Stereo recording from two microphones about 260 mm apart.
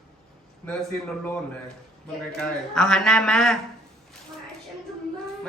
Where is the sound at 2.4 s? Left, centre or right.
Centre.